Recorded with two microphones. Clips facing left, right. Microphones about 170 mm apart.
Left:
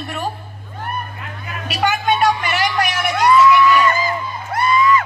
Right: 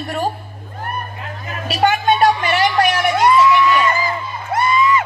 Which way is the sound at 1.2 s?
35° right (ahead or behind).